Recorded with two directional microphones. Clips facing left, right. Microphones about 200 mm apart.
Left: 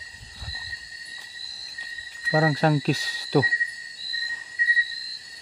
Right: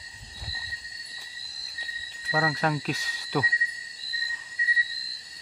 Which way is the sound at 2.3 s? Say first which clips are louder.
Left 6 dB; 30° left (ahead or behind).